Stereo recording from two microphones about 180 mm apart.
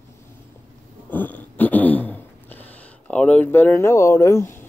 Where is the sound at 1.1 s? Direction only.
10° left (ahead or behind).